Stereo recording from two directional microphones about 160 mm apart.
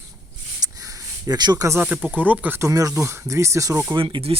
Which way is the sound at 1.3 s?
25° right (ahead or behind).